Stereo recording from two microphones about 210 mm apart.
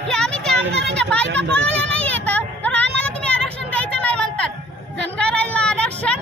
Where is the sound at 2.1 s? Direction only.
5° left (ahead or behind).